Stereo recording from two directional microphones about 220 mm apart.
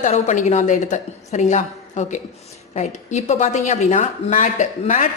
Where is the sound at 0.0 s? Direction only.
35° left (ahead or behind).